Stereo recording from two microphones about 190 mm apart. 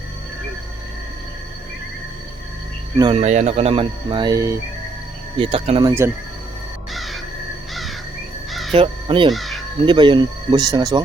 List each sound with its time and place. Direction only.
3.0 s speech: 30° right (ahead or behind)
5.4 s speech: 30° right (ahead or behind)
6.9 s crow: centre (ahead or behind)
8.7 s speech: 30° right (ahead or behind)
9.3 s crow: centre (ahead or behind)
9.8 s speech: 25° right (ahead or behind)